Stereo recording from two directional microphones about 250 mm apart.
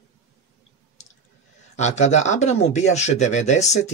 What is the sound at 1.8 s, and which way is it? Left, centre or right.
Speech, left.